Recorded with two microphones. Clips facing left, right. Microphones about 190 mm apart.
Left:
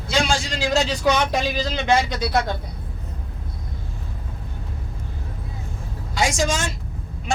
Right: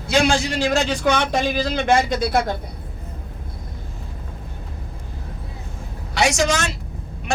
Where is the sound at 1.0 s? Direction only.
50° right (ahead or behind).